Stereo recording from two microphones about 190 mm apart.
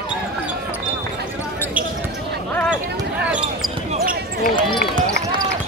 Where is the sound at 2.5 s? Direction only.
5° left (ahead or behind).